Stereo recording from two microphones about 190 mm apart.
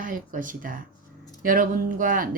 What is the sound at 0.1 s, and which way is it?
Speech, 45° right (ahead or behind).